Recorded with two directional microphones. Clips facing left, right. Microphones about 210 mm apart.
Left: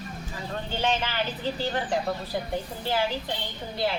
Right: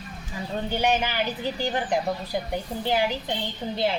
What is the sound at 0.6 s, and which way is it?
Speech, 15° right (ahead or behind).